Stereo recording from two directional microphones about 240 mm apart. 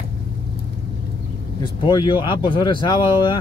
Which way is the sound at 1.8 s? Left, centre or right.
Centre.